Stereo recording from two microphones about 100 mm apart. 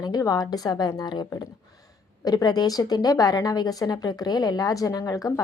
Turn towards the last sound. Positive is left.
turn(degrees=35)  # may be behind; listen again after turning